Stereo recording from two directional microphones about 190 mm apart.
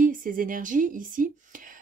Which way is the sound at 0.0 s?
45° right (ahead or behind).